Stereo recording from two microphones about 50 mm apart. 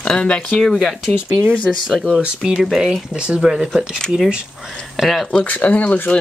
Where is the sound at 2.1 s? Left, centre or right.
Right.